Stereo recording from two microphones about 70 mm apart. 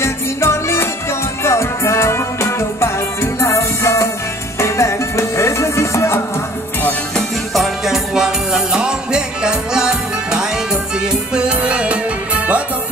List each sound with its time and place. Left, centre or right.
0.0 s music: left
7.5 s music: centre